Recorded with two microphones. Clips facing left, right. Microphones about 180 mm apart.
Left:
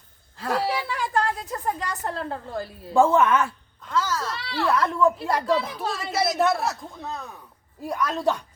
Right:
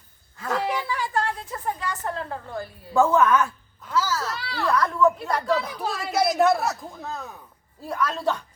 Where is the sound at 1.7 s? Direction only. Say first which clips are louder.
Even; 35° left (ahead or behind).